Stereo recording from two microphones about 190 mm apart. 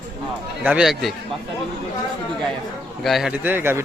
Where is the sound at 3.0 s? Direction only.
Centre (ahead or behind).